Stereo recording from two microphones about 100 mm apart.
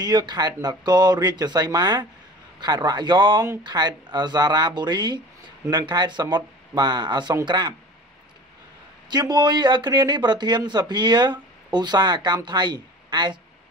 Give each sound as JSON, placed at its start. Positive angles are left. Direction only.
{"t": 0.0, "sound": "speech", "side_deg": -45}
{"t": 9.1, "sound": "speech", "side_deg": -45}